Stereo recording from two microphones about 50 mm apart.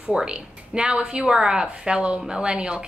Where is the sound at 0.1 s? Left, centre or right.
Centre.